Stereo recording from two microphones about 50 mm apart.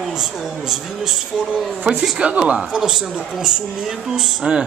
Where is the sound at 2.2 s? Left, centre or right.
Right.